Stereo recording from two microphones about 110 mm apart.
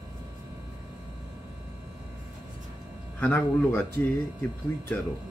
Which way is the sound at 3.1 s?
15° left (ahead or behind).